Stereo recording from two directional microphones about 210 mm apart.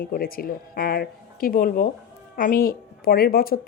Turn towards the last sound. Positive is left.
turn(degrees=45)  # may be behind; listen again after turning